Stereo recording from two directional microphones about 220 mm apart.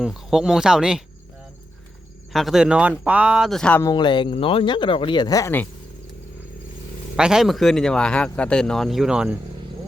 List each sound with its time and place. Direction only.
0.0 s speech: centre (ahead or behind)
2.3 s speech: centre (ahead or behind)
7.2 s speech: 5° right (ahead or behind)